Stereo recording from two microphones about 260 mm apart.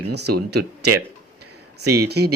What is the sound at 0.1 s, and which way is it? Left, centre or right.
Speech, right.